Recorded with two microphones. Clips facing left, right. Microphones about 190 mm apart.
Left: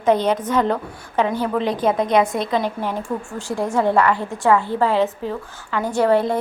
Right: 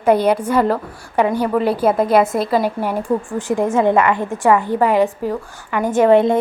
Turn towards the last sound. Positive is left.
turn(degrees=-20)  # may be behind; listen again after turning